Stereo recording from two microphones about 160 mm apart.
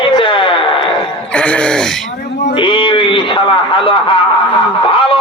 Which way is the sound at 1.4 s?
5° left (ahead or behind).